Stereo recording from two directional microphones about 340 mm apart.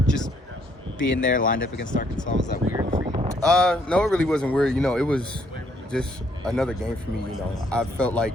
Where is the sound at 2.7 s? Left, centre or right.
Centre.